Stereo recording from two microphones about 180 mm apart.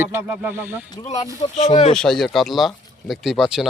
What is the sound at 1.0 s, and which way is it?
Speech, 30° left (ahead or behind).